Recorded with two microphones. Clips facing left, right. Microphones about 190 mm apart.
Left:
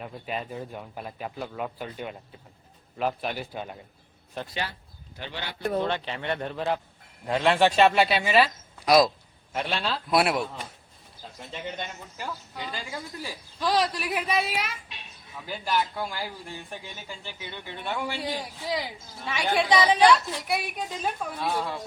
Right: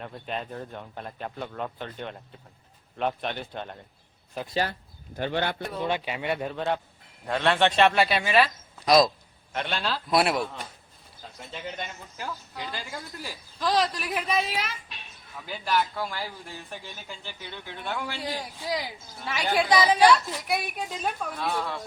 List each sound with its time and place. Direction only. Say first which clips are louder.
0.0 s speech: even; 5° left (ahead or behind)
4.7 s speech: right 6 dB; 50° right (ahead or behind)
5.8 s speech: right 1 dB; 10° right (ahead or behind); by 21.8 s 10° left (ahead or behind)